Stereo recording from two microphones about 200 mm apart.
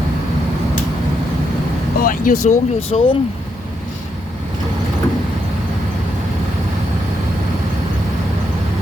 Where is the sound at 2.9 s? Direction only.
25° left (ahead or behind).